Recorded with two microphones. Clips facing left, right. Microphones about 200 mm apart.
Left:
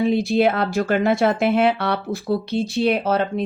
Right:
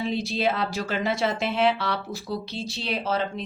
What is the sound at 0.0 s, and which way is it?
Speech, 55° left (ahead or behind).